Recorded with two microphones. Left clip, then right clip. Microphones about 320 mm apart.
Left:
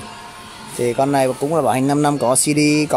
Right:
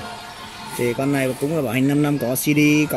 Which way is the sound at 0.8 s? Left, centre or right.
Left.